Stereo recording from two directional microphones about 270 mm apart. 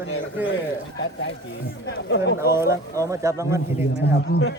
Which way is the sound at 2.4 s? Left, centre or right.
Centre.